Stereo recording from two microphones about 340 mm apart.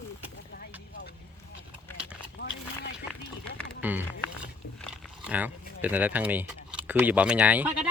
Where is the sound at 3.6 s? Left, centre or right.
Centre.